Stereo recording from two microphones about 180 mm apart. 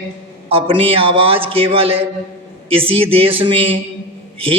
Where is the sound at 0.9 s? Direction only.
30° right (ahead or behind).